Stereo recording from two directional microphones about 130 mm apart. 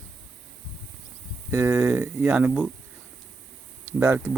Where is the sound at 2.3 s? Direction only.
10° right (ahead or behind).